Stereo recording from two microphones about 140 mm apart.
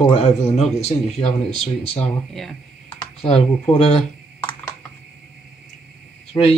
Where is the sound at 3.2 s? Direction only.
45° left (ahead or behind).